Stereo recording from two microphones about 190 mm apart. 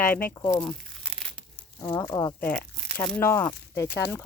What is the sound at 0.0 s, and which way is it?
Speech, 10° left (ahead or behind).